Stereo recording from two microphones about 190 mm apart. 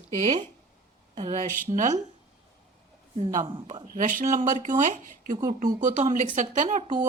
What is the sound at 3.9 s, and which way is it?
Speech, 45° right (ahead or behind).